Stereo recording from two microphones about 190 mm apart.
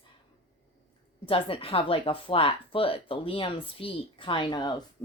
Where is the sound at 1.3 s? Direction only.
30° left (ahead or behind).